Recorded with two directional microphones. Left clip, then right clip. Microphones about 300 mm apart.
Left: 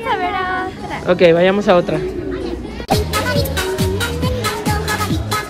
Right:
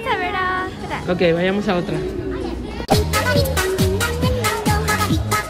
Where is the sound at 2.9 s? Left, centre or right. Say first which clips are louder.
Even; centre.